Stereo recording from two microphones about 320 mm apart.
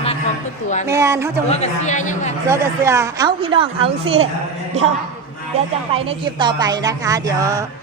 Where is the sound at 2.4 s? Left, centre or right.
Centre.